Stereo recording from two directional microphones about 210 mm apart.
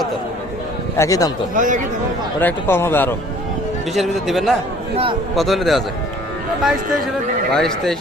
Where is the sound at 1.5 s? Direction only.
40° right (ahead or behind).